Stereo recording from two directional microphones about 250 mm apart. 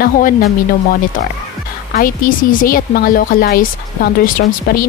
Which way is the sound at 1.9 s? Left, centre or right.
Left.